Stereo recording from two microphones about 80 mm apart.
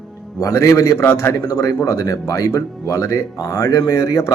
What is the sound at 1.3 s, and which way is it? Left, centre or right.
A man's voice, left.